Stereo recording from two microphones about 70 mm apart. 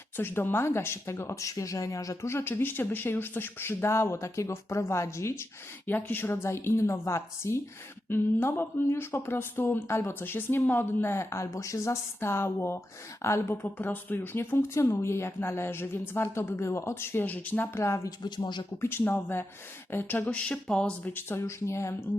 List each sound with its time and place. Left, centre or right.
0.2 s speech: left
1.4 s speech: left
2.2 s speech: left
17.7 s speech: left
18.2 s speech: left
18.8 s speech: left; by 20.9 s centre
21.0 s speech: left